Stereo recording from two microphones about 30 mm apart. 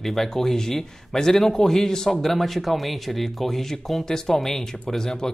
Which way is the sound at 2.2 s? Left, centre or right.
Centre.